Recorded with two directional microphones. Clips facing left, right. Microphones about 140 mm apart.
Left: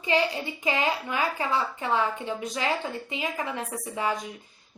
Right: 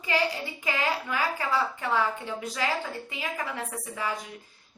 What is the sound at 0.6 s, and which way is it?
Speech, 20° left (ahead or behind).